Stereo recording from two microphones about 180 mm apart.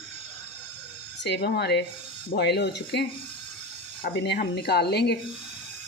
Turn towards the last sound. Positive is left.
turn(degrees=65)  # may be behind; listen again after turning